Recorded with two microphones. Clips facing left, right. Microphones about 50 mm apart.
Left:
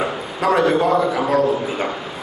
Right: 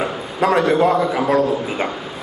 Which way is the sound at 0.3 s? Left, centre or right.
Right.